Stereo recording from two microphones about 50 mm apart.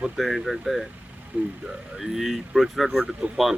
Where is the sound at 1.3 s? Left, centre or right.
Right.